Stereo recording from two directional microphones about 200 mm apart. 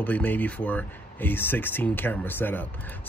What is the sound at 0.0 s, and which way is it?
Speech, 10° left (ahead or behind).